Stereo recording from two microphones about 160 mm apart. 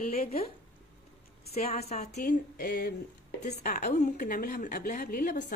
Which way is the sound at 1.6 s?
40° left (ahead or behind).